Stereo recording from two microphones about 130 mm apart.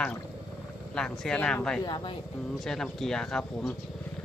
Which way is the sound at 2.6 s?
Centre (ahead or behind).